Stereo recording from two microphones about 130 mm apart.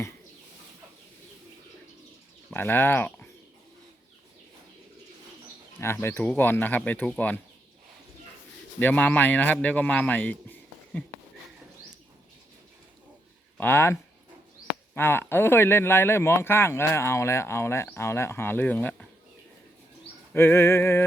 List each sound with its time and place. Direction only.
2.5 s speech: 15° left (ahead or behind)
5.8 s speech: 20° left (ahead or behind)
8.8 s a man's voice: 10° left (ahead or behind)
13.6 s a sound: 15° left (ahead or behind)
14.9 s speech: 15° left (ahead or behind)
20.3 s a sound: 20° left (ahead or behind)